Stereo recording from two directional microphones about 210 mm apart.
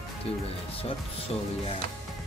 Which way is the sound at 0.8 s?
25° left (ahead or behind).